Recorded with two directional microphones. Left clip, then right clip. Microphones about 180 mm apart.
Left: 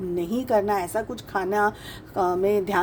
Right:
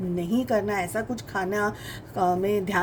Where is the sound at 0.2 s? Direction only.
45° left (ahead or behind).